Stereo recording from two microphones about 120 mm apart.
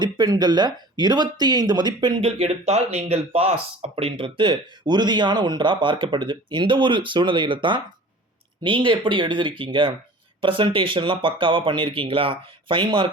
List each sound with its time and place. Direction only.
0.0 s speech: 35° right (ahead or behind)
2.2 s speech: 55° right (ahead or behind)